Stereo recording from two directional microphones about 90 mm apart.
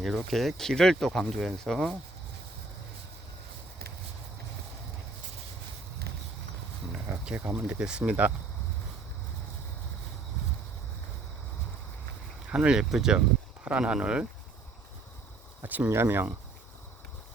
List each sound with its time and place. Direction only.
0.0 s speech: centre (ahead or behind)
6.9 s speech: 15° right (ahead or behind)
12.5 s speech: 10° right (ahead or behind)
15.6 s speech: 20° right (ahead or behind)